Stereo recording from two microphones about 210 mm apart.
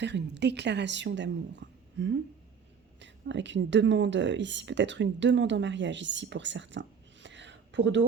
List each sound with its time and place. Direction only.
0.0 s a woman's voice: 55° right (ahead or behind)